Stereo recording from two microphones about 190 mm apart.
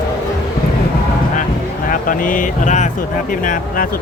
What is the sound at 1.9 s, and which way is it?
Speech, 45° left (ahead or behind).